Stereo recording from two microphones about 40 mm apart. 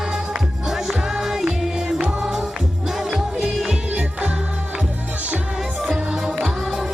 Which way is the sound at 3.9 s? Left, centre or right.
Right.